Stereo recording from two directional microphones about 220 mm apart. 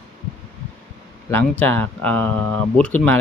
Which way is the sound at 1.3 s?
10° left (ahead or behind).